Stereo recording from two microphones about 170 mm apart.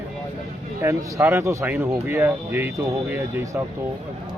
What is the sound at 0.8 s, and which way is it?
Speech, 15° right (ahead or behind).